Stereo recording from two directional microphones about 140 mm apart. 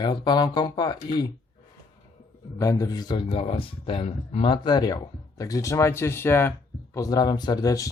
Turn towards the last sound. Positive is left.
turn(degrees=25)  # may be behind; listen again after turning